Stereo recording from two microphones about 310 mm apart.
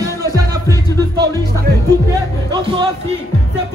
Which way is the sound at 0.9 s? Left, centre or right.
Centre.